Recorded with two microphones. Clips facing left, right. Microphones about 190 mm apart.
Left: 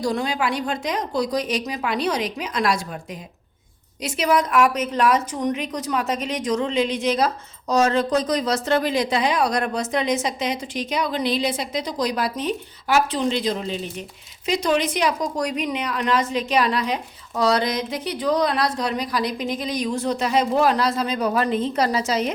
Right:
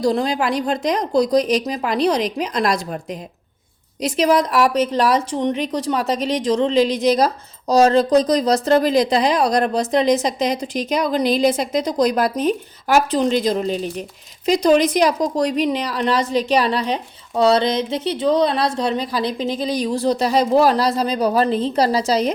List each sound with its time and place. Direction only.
0.0 s a woman's voice: 35° right (ahead or behind)